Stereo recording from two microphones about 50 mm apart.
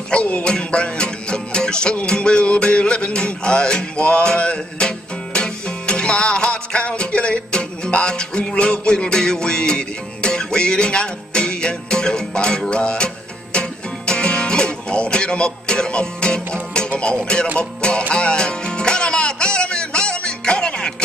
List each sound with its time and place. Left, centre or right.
0.1 s music: left